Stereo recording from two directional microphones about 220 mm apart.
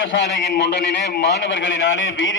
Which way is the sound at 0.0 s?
55° left (ahead or behind).